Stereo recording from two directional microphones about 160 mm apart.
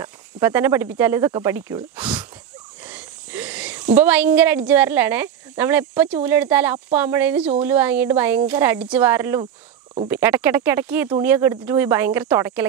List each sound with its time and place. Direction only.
0.0 s speech: 15° right (ahead or behind)